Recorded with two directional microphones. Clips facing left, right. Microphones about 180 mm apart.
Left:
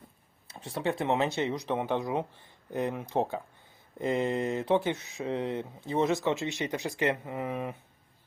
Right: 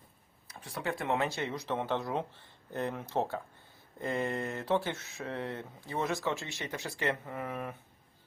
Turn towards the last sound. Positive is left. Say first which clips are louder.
# left 4 dB
turn(degrees=20)  # may be behind; listen again after turning